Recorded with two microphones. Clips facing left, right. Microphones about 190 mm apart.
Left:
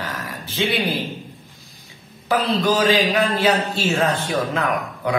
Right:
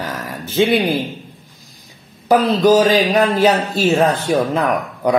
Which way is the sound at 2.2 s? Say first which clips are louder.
Right 7 dB; 40° right (ahead or behind).